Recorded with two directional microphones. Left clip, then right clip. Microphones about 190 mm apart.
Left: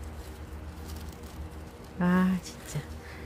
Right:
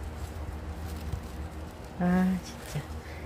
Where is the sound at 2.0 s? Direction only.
25° left (ahead or behind).